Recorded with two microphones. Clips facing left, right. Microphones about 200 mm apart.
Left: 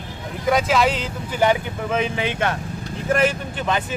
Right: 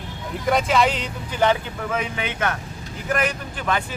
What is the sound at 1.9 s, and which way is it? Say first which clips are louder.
Speech: left 4 dB; 25° left (ahead or behind).